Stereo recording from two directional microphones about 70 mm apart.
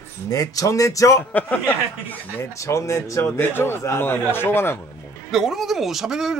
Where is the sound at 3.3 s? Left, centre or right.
Left.